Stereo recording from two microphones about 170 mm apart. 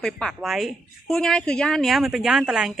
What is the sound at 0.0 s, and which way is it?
Speech, centre (ahead or behind).